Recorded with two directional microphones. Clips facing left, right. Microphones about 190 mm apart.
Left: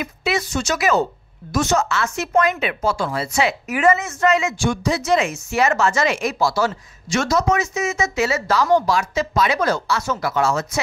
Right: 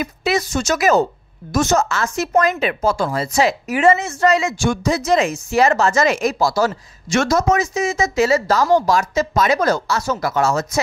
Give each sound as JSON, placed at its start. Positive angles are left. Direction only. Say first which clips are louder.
{"t": 0.0, "sound": "speech", "louder": "right 3 dB", "side_deg": -40}
{"t": 3.7, "sound": "speech", "louder": "right 2 dB", "side_deg": -30}